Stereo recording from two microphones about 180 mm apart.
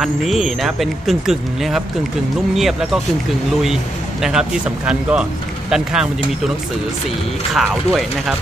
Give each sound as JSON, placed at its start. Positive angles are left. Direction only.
{"t": 0.0, "sound": "speech", "side_deg": 0}
{"t": 4.2, "sound": "speech", "side_deg": -5}
{"t": 7.5, "sound": "speech", "side_deg": 0}